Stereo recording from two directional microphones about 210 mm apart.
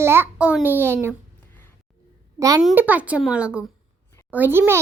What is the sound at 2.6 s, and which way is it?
A child's voice, 5° right (ahead or behind).